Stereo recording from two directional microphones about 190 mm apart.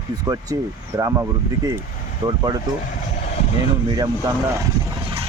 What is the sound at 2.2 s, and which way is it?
Speech, 20° right (ahead or behind).